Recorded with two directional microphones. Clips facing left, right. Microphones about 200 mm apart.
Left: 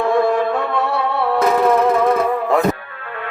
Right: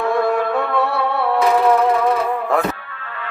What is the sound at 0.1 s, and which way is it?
Music, centre (ahead or behind).